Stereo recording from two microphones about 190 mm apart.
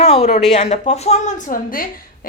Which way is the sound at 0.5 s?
35° left (ahead or behind).